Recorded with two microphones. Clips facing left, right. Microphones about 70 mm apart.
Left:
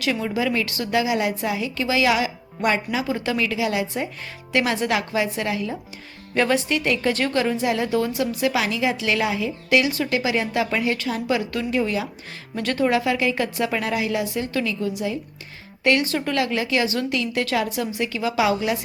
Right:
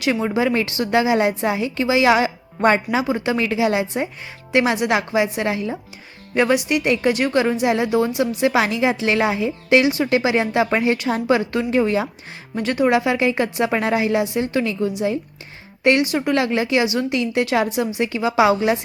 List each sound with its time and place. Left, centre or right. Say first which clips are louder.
0.1 s a woman's voice: right 4 dB; right
3.1 s a woman's voice: right 3 dB; right
6.3 s a woman's voice: right 3 dB; centre; by 12.0 s right
12.5 s a woman's voice: right 3 dB; centre